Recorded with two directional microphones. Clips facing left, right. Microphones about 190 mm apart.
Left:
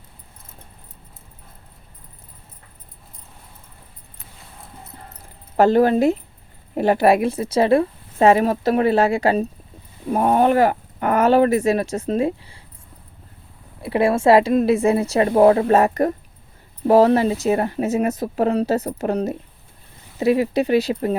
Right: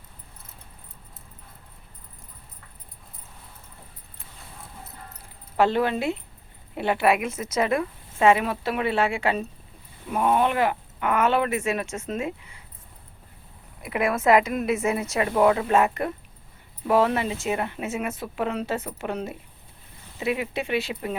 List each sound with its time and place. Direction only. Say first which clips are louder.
5.5 s speech: left 7 dB; 40° left (ahead or behind)
13.8 s speech: left 6 dB; 30° left (ahead or behind)